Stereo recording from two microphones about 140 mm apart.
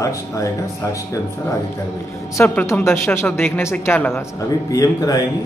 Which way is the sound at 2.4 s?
15° left (ahead or behind).